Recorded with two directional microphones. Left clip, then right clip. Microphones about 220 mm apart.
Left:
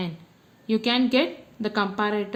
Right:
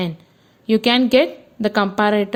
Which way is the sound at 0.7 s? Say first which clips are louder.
Right 8 dB; 45° right (ahead or behind).